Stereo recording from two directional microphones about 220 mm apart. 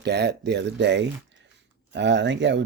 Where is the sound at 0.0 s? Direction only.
50° right (ahead or behind).